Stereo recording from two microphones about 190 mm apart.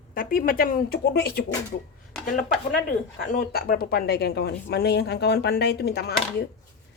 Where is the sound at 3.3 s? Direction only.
45° left (ahead or behind).